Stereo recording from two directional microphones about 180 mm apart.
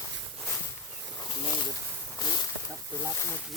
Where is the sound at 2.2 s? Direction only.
20° left (ahead or behind).